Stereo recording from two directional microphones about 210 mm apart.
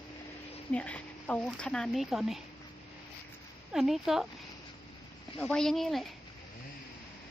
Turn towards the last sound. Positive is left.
turn(degrees=0)  # may be behind; listen again after turning